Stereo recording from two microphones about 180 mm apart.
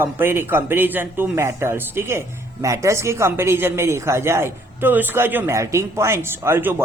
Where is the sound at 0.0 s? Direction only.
10° right (ahead or behind).